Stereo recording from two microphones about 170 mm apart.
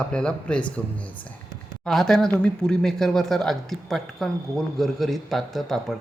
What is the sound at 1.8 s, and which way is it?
A woman's voice, 5° left (ahead or behind).